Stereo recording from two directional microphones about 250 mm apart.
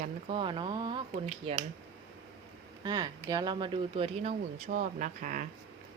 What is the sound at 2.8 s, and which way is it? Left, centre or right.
Speech, centre.